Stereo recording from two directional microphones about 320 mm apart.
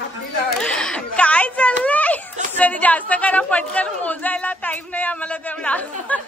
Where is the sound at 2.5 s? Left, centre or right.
Centre.